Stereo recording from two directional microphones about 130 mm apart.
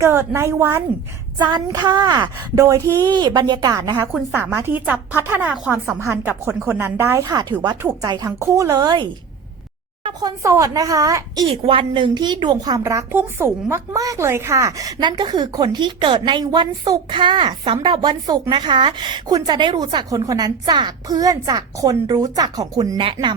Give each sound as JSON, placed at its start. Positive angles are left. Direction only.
{"t": 0.0, "sound": "a woman's voice", "side_deg": -20}
{"t": 1.4, "sound": "a woman's voice", "side_deg": -35}
{"t": 10.2, "sound": "a woman's voice", "side_deg": -25}
{"t": 11.4, "sound": "a woman's voice", "side_deg": -45}